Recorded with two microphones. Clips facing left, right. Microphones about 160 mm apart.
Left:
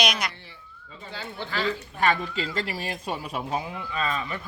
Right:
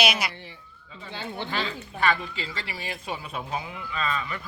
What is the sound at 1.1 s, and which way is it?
Speech, 20° right (ahead or behind).